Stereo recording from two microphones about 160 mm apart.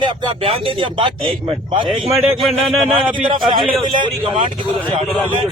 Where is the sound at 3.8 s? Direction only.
30° right (ahead or behind).